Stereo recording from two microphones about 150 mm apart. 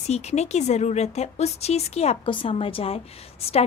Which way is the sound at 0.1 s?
45° left (ahead or behind).